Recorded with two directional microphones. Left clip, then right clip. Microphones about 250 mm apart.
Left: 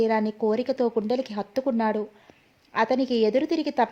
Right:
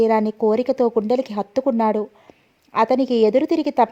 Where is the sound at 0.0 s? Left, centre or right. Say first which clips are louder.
Right 6 dB; right.